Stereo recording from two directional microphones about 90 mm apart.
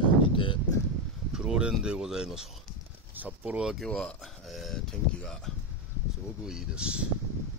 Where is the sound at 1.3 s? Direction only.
10° right (ahead or behind).